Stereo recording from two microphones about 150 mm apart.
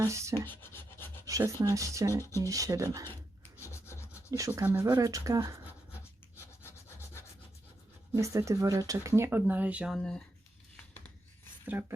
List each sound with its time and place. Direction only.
0.0 s speech: 20° right (ahead or behind)
0.4 s a sound: 15° left (ahead or behind)
1.3 s speech: 20° right (ahead or behind)
3.6 s rub: 20° left (ahead or behind)
4.3 s speech: 20° right (ahead or behind)
6.0 s rub: 15° left (ahead or behind)
8.1 s speech: 20° right (ahead or behind); by 10.2 s 5° left (ahead or behind)
11.6 s speech: 15° right (ahead or behind)